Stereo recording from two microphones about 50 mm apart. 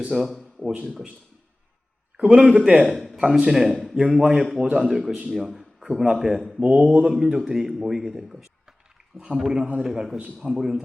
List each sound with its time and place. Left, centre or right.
0.1 s a man's voice: centre
2.1 s a man's voice: centre
2.8 s speech: centre
3.2 s a man's voice: centre
5.3 s a sound: centre
6.1 s a man's voice: centre
9.1 s speech: centre
9.8 s a man's voice: centre